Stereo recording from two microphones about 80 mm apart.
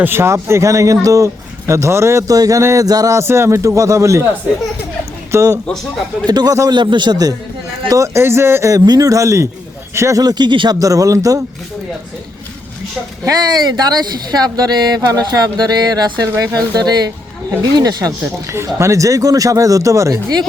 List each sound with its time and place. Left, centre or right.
0.0 s speech: right
2.8 s speech: right
3.2 s speech: right
5.3 s speech: right
6.2 s speech: right
6.7 s a man's voice: right
7.9 s speech: right
8.7 s speech: right
10.8 s speech: right
13.5 s speech: right
18.5 s speech: right